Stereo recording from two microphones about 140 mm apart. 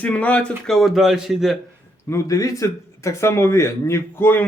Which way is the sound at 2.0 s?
20° left (ahead or behind).